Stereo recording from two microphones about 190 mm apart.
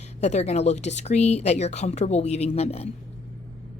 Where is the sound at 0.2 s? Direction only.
35° left (ahead or behind).